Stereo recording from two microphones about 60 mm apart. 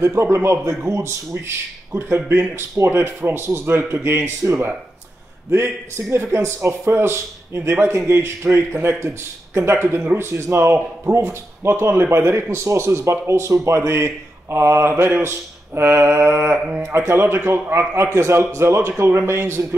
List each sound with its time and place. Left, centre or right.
0.0 s speech: right